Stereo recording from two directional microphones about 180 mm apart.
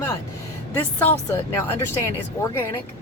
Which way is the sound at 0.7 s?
10° left (ahead or behind).